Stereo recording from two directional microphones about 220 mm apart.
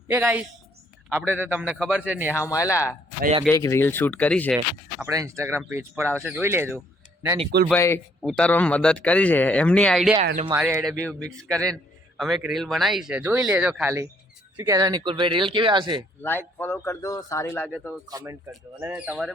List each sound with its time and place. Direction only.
0.1 s a man's voice: 10° right (ahead or behind)
2.3 s speech: 15° left (ahead or behind)
5.0 s a man's voice: 15° right (ahead or behind)
7.7 s a man's voice: 10° left (ahead or behind)
10.5 s a man's voice: 10° right (ahead or behind)
11.3 s a man's voice: 5° left (ahead or behind); by 16.0 s 20° right (ahead or behind)
16.2 s speech: 10° left (ahead or behind)
18.1 s a man's voice: 15° right (ahead or behind)